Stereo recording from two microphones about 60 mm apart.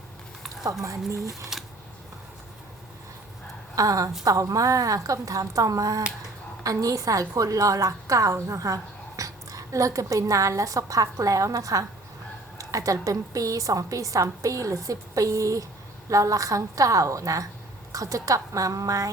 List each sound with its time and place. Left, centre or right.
0.6 s a woman's voice: right
1.5 s a sound: centre
3.8 s a woman's voice: right